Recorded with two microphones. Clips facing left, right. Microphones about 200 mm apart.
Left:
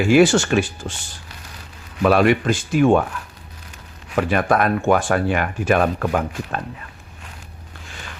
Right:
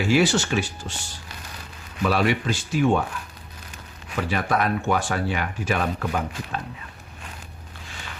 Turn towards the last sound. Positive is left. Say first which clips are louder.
# left 5 dB
turn(degrees=55)  # may be behind; listen again after turning